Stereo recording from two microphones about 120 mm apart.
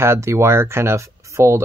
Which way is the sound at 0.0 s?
20° right (ahead or behind).